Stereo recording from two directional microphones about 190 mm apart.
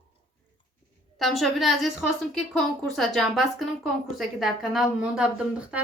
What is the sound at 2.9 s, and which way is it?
A woman's voice, centre (ahead or behind).